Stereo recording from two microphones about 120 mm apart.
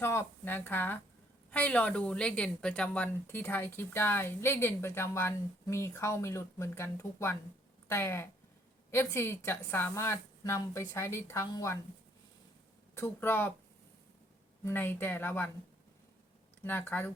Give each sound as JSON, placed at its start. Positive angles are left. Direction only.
{"t": 0.0, "sound": "a woman's voice", "side_deg": 20}
{"t": 12.9, "sound": "speech", "side_deg": 20}
{"t": 14.6, "sound": "speech", "side_deg": 15}
{"t": 16.6, "sound": "speech", "side_deg": 15}